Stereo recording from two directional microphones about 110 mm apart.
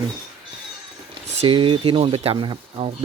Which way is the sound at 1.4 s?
50° right (ahead or behind).